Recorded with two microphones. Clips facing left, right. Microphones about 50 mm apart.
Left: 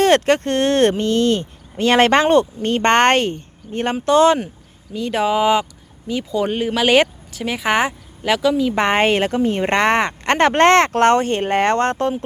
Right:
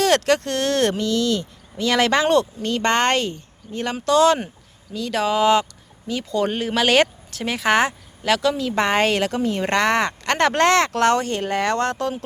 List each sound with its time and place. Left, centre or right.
0.0 s speech: left
2.2 s speech: left
8.8 s speech: left